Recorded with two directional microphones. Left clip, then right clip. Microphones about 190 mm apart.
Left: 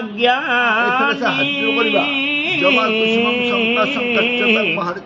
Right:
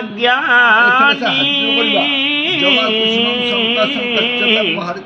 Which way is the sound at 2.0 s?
20° left (ahead or behind).